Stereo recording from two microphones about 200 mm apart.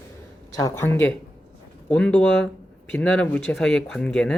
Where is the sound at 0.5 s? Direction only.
15° left (ahead or behind).